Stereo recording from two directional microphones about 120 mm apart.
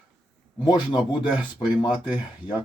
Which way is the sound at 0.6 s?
40° left (ahead or behind).